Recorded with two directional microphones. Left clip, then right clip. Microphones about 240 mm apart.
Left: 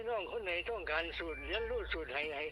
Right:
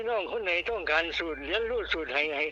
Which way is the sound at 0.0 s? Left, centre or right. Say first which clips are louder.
Right 8 dB; right.